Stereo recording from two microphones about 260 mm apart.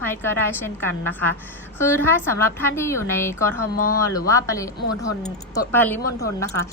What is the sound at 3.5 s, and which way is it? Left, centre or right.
Speech, left.